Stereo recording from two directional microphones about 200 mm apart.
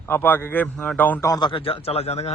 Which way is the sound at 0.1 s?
10° left (ahead or behind).